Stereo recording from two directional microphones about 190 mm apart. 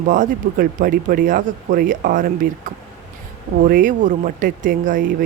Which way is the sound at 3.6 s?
45° right (ahead or behind).